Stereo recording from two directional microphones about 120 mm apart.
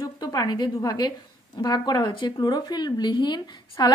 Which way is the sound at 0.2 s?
35° left (ahead or behind).